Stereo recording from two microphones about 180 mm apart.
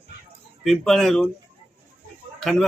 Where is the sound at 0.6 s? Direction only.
Centre (ahead or behind).